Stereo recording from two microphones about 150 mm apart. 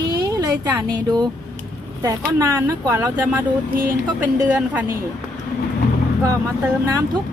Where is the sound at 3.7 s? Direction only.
70° right (ahead or behind).